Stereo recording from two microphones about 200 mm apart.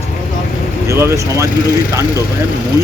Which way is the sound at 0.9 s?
15° right (ahead or behind).